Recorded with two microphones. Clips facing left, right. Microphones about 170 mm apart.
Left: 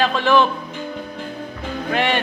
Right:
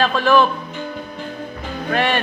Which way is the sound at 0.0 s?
20° left (ahead or behind).